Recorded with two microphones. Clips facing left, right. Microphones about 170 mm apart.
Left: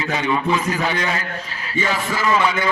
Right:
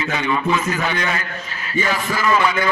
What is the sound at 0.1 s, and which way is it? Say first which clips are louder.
A man's voice: left 1 dB; 35° left (ahead or behind).